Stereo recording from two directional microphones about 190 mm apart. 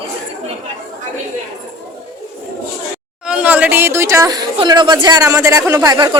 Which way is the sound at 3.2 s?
5° right (ahead or behind).